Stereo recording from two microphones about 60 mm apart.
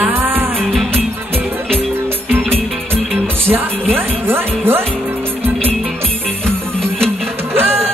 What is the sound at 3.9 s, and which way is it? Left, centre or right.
Speech, right.